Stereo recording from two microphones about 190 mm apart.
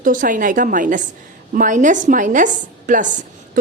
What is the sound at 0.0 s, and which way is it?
A woman's voice, 45° right (ahead or behind).